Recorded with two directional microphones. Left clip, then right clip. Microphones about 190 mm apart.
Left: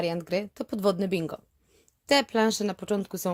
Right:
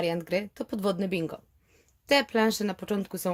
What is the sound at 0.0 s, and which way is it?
A woman's voice, 25° left (ahead or behind).